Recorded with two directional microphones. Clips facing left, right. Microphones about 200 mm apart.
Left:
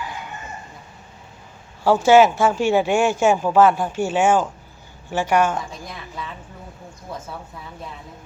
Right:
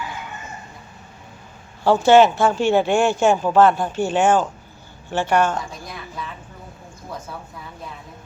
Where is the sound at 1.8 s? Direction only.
10° left (ahead or behind).